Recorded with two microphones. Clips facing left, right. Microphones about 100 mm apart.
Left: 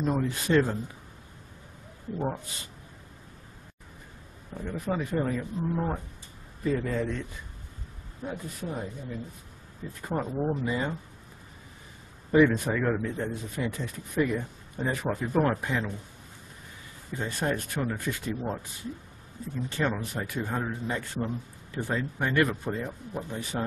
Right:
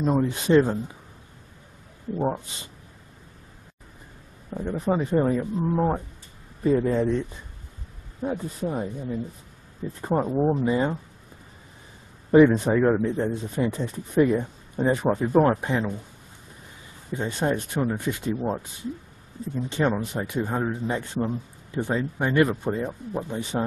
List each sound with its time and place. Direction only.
0.0 s speech: 20° right (ahead or behind)
2.1 s speech: 25° right (ahead or behind)
4.6 s speech: 30° right (ahead or behind)
12.3 s speech: 25° right (ahead or behind)
17.1 s speech: 20° right (ahead or behind)